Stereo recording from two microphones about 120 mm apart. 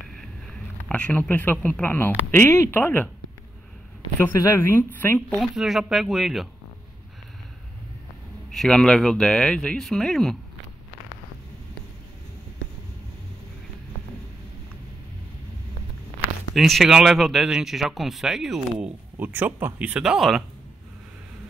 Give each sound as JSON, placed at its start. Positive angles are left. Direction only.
{"t": 0.5, "sound": "speech", "side_deg": 5}
{"t": 4.6, "sound": "speech", "side_deg": 15}
{"t": 5.4, "sound": "speech", "side_deg": 0}
{"t": 8.5, "sound": "speech", "side_deg": 5}
{"t": 16.5, "sound": "speech", "side_deg": 0}